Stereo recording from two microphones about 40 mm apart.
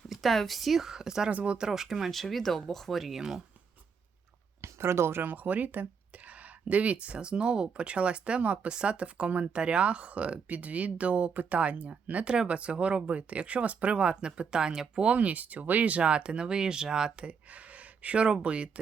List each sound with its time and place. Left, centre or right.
0.1 s speech: centre
1.3 s speech: right
1.5 s speech: centre
2.0 s speech: centre
3.2 s speech: centre
4.8 s speech: right
5.2 s speech: right
12.2 s speech: centre
12.5 s speech: right
15.0 s speech: right
17.2 s a sound: right
18.4 s speech: right